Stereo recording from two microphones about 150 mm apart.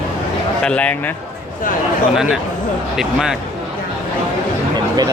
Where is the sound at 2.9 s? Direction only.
5° right (ahead or behind).